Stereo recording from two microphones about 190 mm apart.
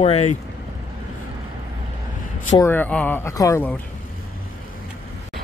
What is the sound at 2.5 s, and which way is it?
Speech, 10° left (ahead or behind).